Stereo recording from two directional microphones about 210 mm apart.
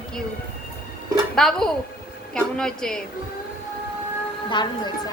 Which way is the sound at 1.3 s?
Centre (ahead or behind).